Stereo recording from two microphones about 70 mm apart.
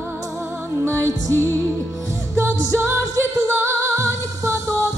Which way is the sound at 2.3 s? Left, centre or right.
Right.